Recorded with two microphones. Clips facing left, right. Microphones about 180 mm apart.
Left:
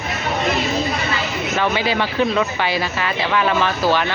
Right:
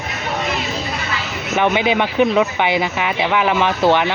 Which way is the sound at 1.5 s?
20° right (ahead or behind).